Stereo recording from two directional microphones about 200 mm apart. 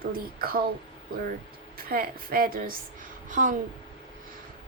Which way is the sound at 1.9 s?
45° right (ahead or behind).